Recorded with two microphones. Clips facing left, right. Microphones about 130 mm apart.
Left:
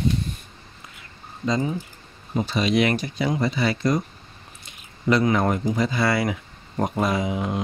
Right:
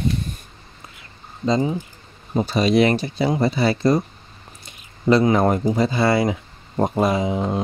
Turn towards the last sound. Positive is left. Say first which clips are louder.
# right 3 dB
turn(degrees=-30)  # may be behind; listen again after turning